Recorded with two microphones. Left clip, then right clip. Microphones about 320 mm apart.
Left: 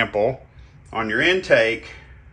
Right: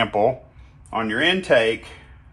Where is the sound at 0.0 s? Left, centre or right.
Centre.